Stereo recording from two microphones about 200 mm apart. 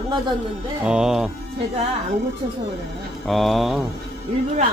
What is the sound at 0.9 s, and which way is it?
Speech, 5° right (ahead or behind).